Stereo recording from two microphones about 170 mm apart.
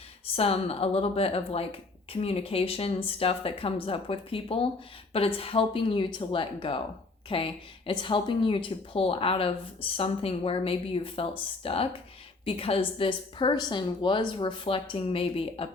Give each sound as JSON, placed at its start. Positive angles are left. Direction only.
{"t": 0.3, "sound": "a woman's voice", "side_deg": 35}